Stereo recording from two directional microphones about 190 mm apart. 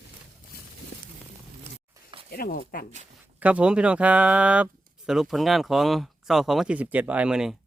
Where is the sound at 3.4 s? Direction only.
5° right (ahead or behind).